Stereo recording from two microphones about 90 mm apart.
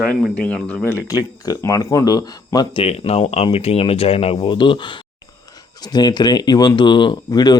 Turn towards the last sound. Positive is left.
turn(degrees=50)  # may be behind; listen again after turning